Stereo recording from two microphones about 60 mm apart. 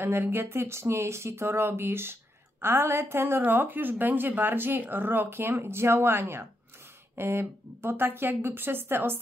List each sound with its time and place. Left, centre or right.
0.0 s a woman's voice: right